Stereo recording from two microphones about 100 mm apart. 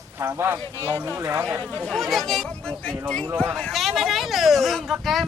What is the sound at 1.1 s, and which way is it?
Speech, 30° right (ahead or behind).